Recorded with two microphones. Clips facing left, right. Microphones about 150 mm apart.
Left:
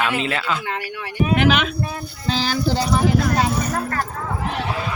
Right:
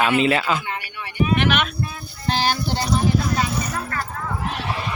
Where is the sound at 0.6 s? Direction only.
90° left.